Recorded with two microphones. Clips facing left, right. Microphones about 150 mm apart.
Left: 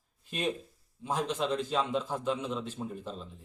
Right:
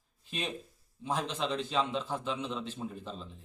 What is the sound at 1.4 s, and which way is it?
A man's voice, 5° left (ahead or behind).